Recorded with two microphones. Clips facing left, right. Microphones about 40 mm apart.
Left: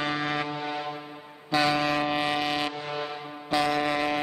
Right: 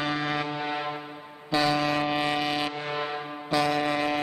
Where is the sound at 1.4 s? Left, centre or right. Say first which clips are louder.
Even; centre.